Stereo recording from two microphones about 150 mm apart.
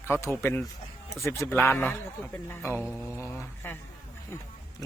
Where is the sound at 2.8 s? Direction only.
5° right (ahead or behind).